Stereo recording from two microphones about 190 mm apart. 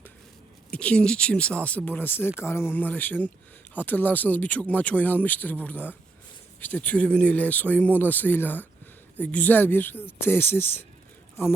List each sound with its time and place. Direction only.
0.7 s speech: 5° left (ahead or behind)